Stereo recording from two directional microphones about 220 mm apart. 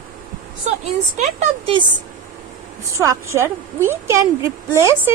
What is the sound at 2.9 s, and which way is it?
A woman's voice, 15° right (ahead or behind).